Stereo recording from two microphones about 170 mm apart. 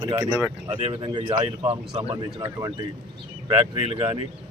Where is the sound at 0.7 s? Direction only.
40° right (ahead or behind).